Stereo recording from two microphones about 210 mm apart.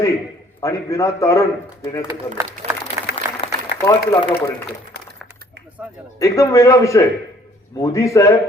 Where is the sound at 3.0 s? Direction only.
15° right (ahead or behind).